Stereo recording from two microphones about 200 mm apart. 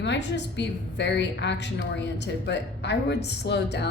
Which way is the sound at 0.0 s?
60° left (ahead or behind).